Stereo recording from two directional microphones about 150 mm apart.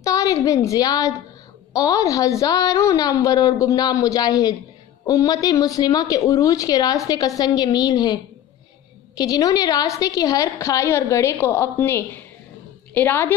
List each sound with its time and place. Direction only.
0.0 s a woman's voice: 20° left (ahead or behind)